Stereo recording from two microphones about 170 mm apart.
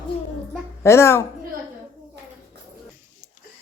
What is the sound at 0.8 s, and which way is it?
Speech, 15° left (ahead or behind).